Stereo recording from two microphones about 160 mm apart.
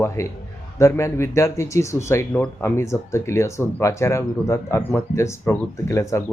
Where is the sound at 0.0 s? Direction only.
15° left (ahead or behind).